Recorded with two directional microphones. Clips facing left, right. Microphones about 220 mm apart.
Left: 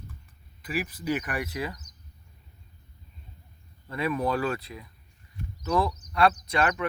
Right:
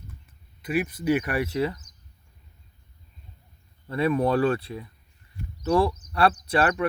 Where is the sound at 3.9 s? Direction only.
30° right (ahead or behind).